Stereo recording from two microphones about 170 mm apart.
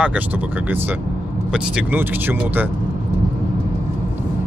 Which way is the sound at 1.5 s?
10° right (ahead or behind).